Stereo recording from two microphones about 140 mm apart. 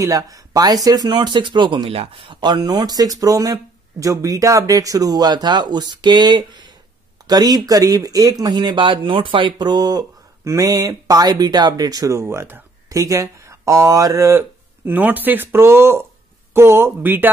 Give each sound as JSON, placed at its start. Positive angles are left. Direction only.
{"t": 0.0, "sound": "speech", "side_deg": -25}